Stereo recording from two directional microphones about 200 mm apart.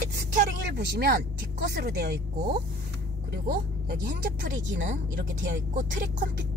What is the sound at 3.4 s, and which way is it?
Speech, 50° right (ahead or behind).